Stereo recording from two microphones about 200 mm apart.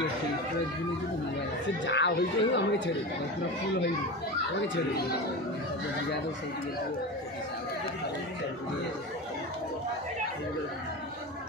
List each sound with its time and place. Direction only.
1.9 s speech: 60° left (ahead or behind)